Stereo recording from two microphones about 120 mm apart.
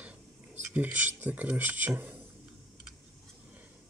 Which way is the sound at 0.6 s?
10° right (ahead or behind).